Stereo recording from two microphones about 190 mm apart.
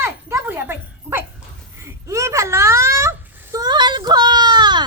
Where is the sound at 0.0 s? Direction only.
15° right (ahead or behind).